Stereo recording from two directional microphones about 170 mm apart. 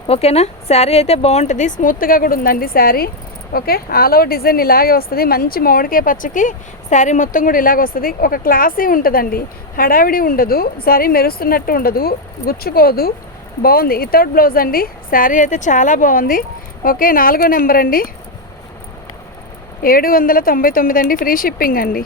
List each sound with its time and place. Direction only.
0.1 s a woman's voice: 35° left (ahead or behind); by 18.1 s 55° left (ahead or behind)
19.8 s a woman's voice: 60° left (ahead or behind)